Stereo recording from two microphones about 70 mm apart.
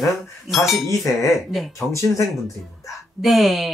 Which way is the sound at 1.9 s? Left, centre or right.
Left.